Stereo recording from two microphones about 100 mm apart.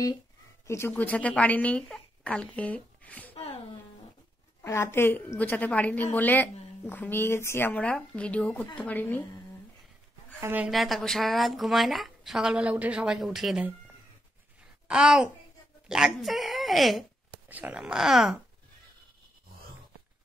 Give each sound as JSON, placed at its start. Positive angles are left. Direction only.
{"t": 0.7, "sound": "a woman's voice", "side_deg": 25}
{"t": 4.6, "sound": "a woman's voice", "side_deg": 30}
{"t": 10.4, "sound": "speech", "side_deg": -20}
{"t": 10.7, "sound": "a woman's voice", "side_deg": 0}
{"t": 14.9, "sound": "a woman's voice", "side_deg": -5}
{"t": 17.5, "sound": "speech", "side_deg": -15}